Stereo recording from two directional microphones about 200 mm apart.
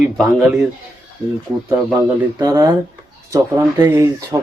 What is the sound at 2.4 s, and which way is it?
Speech, 20° right (ahead or behind).